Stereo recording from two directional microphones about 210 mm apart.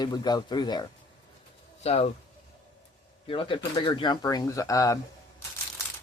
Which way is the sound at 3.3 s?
25° left (ahead or behind).